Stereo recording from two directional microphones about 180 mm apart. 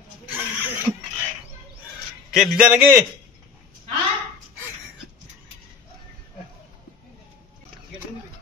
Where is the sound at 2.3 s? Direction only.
Centre (ahead or behind).